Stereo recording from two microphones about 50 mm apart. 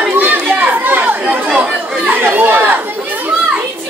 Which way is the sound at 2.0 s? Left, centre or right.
Right.